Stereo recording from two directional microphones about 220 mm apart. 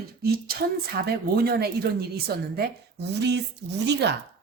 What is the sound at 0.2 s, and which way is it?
Speech, 45° right (ahead or behind).